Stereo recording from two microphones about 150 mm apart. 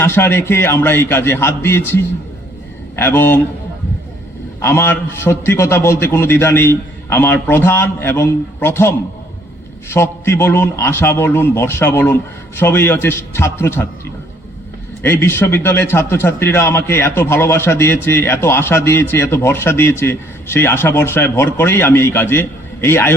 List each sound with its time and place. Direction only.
0.0 s a man's voice: 15° left (ahead or behind)
4.6 s a man's voice: 15° left (ahead or behind)
15.0 s a man's voice: 15° left (ahead or behind)